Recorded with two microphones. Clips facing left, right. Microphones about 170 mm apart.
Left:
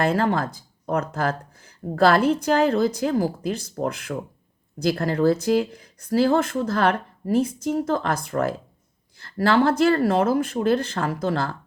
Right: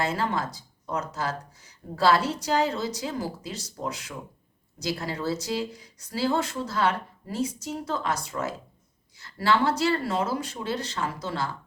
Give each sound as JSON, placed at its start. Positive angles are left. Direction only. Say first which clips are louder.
{"t": 0.0, "sound": "speech", "louder": "left 6 dB", "side_deg": 55}